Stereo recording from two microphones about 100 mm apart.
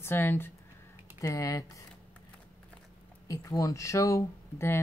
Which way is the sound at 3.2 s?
35° left (ahead or behind).